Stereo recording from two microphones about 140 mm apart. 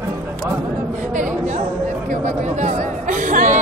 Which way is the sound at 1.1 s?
65° right (ahead or behind).